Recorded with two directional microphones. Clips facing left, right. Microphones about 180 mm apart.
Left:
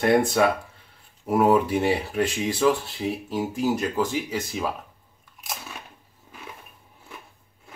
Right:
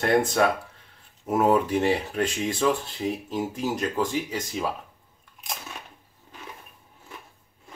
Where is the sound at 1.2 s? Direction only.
10° left (ahead or behind).